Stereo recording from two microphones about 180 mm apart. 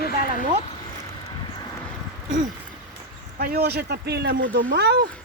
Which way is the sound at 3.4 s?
60° right (ahead or behind).